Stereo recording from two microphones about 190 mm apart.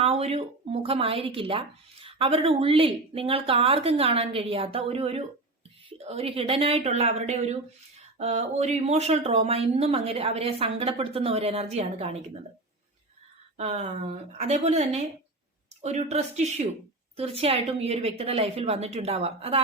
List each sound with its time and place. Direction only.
0.0 s speech: 30° right (ahead or behind)
13.6 s speech: 35° right (ahead or behind)